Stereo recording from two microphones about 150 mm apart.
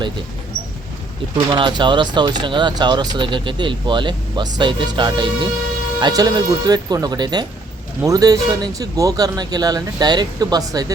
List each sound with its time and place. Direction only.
1.5 s speech: 30° right (ahead or behind)